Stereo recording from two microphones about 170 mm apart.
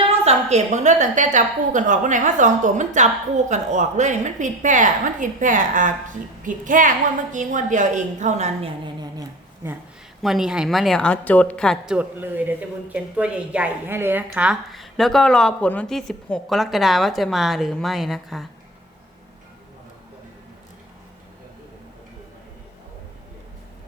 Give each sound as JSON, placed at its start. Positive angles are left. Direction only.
{"t": 0.0, "sound": "a woman's voice", "side_deg": -35}
{"t": 10.2, "sound": "a woman's voice", "side_deg": 0}
{"t": 11.9, "sound": "a woman's voice", "side_deg": -10}